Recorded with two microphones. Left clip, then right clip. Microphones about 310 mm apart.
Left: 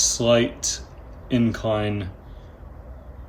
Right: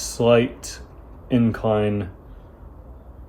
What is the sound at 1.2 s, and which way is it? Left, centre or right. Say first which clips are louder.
Speech: right 2 dB; centre.